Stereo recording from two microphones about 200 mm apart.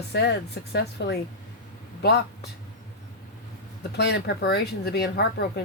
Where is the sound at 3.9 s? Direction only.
55° left (ahead or behind).